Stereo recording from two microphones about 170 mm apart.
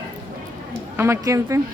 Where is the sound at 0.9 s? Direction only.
15° right (ahead or behind).